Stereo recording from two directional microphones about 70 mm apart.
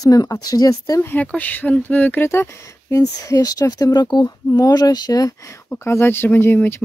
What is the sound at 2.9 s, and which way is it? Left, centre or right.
Speech, left.